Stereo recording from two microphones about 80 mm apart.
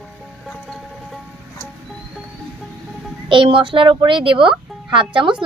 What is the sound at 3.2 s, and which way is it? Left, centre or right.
Speech, right.